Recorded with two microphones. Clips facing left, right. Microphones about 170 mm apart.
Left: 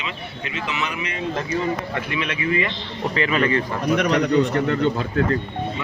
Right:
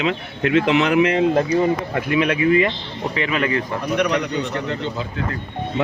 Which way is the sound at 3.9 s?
50° left (ahead or behind).